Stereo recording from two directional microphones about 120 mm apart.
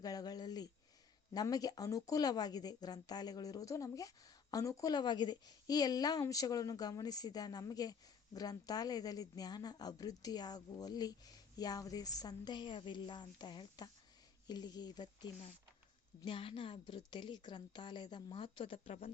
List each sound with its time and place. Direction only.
0.0 s a sound: 30° left (ahead or behind)
1.3 s speech: 30° left (ahead or behind)
16.2 s speech: 45° left (ahead or behind)